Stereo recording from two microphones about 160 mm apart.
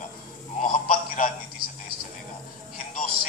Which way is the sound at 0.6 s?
55° left (ahead or behind).